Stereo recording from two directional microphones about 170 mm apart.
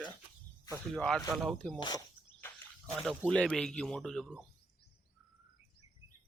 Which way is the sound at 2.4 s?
10° left (ahead or behind).